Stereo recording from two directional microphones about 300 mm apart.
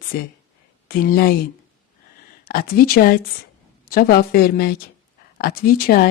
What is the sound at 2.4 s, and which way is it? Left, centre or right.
Speech, left.